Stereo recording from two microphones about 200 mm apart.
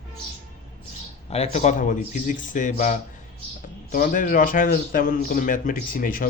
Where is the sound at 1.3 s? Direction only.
35° left (ahead or behind).